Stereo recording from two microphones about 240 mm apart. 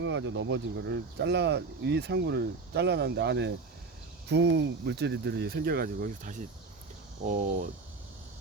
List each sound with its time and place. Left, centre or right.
0.0 s speech: right